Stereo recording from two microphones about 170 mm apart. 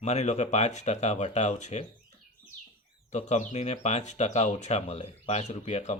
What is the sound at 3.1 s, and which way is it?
Speech, 45° left (ahead or behind).